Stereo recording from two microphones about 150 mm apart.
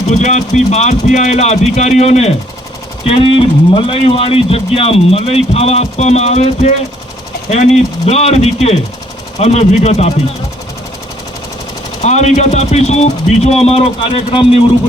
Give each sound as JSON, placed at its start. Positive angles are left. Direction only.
{"t": 0.1, "sound": "speech", "side_deg": 50}
{"t": 12.0, "sound": "speech", "side_deg": 50}